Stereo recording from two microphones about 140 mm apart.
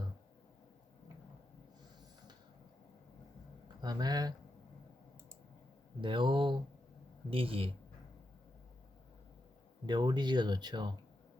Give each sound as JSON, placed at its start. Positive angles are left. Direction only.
{"t": 3.8, "sound": "speech", "side_deg": -30}
{"t": 6.0, "sound": "speech", "side_deg": -35}
{"t": 9.8, "sound": "speech", "side_deg": -30}